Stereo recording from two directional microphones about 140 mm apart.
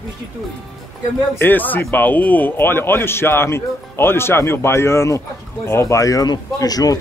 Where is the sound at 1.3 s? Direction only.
15° left (ahead or behind).